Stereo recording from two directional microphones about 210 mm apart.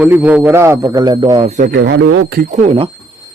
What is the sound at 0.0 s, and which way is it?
A man's voice, 5° right (ahead or behind).